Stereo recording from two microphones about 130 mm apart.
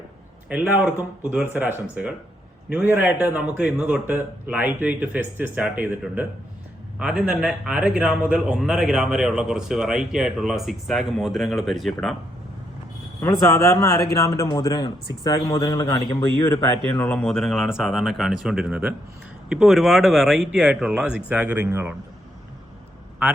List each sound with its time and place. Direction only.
0.4 s a man's voice: 10° right (ahead or behind)
7.0 s a man's voice: 5° right (ahead or behind)
13.2 s speech: 25° left (ahead or behind)
16.9 s a man's voice: 10° left (ahead or behind); by 21.9 s 20° right (ahead or behind)